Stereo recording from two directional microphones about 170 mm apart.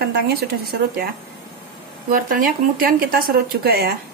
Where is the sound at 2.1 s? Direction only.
55° right (ahead or behind).